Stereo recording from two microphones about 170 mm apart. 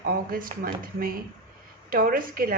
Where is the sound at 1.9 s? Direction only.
55° right (ahead or behind).